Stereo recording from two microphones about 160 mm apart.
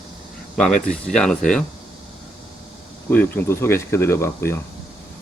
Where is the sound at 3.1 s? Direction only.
15° left (ahead or behind).